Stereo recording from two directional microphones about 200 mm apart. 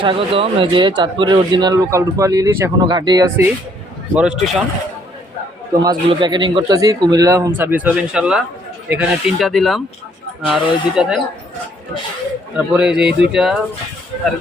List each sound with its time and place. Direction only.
0.0 s speech: 25° right (ahead or behind)
4.1 s speech: 5° right (ahead or behind)
5.8 s speech: 20° right (ahead or behind); by 11.2 s centre (ahead or behind)
12.5 s speech: 5° right (ahead or behind)